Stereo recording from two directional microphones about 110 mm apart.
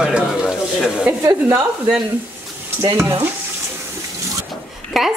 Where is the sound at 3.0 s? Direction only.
20° right (ahead or behind).